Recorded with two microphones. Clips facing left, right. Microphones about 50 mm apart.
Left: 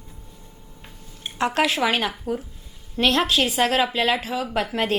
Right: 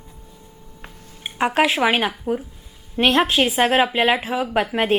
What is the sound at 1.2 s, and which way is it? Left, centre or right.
A woman's voice, centre.